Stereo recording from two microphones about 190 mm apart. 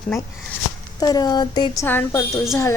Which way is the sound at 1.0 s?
20° left (ahead or behind).